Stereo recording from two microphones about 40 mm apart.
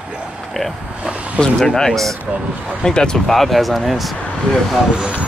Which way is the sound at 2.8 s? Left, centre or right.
Centre.